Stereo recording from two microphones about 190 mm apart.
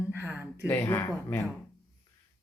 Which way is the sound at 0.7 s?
15° left (ahead or behind).